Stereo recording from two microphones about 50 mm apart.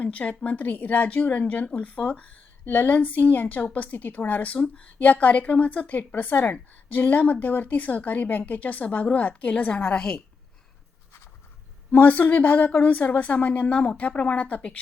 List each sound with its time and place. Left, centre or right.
0.0 s a woman's voice: left
4.5 s a woman's voice: left
11.9 s a woman's voice: left